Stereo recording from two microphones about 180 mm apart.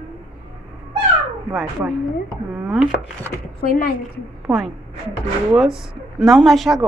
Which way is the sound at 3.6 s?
55° left (ahead or behind).